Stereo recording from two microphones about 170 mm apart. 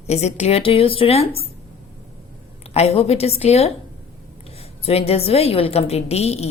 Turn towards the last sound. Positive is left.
turn(degrees=35)  # may be behind; listen again after turning